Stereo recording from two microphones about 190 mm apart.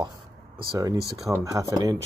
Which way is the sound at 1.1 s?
15° right (ahead or behind).